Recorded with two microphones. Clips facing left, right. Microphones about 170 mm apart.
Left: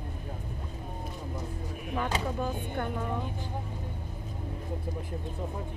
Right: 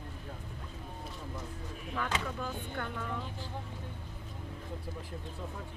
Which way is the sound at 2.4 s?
15° left (ahead or behind).